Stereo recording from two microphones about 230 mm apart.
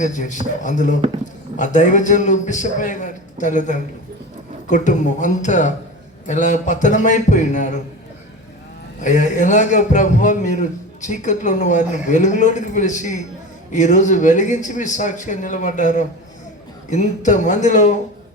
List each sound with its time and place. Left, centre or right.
0.0 s a man's voice: left
9.0 s a man's voice: left